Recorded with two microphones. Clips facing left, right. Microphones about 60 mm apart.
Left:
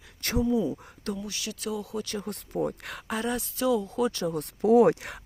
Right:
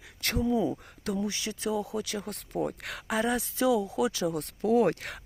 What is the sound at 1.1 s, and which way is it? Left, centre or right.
Speech, right.